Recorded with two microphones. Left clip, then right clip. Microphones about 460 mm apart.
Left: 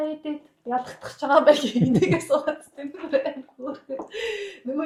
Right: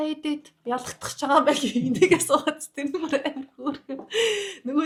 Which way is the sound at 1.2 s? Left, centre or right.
Right.